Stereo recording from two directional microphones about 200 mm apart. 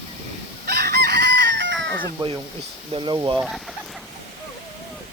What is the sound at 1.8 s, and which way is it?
Cat, 5° left (ahead or behind).